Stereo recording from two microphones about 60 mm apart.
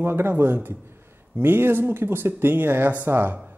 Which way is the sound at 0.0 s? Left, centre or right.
Right.